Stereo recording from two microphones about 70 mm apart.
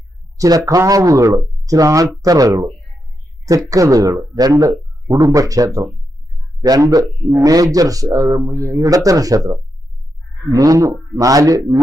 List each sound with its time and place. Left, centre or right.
0.3 s speech: right
7.3 s speech: right